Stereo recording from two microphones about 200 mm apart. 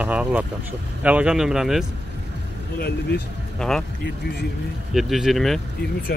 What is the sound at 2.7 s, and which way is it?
Speech, 50° left (ahead or behind).